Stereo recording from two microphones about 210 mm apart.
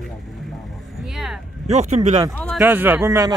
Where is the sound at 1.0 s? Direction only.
Centre (ahead or behind).